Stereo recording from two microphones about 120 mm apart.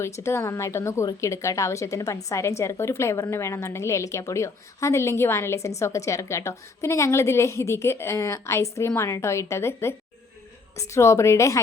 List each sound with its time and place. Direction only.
0.0 s a woman's voice: 20° left (ahead or behind)